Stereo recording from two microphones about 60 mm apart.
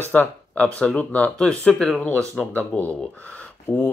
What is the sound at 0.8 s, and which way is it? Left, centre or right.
Speech, left.